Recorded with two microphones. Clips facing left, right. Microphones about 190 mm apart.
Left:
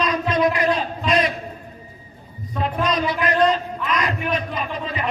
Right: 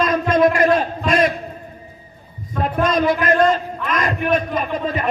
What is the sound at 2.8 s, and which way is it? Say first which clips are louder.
A man's voice: right 6 dB; 50° right (ahead or behind).